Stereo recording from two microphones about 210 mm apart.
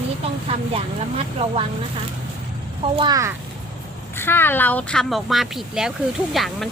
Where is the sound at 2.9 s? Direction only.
20° right (ahead or behind).